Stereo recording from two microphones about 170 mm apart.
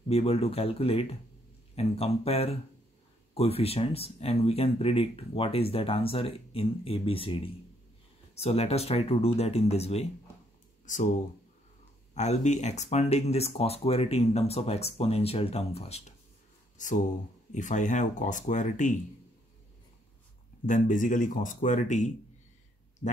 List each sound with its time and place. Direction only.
0.1 s speech: 35° left (ahead or behind)
12.1 s speech: 40° left (ahead or behind)
16.7 s speech: 50° left (ahead or behind)
20.6 s speech: 45° left (ahead or behind)